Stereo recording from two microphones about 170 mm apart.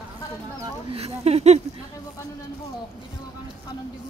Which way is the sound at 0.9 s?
35° right (ahead or behind).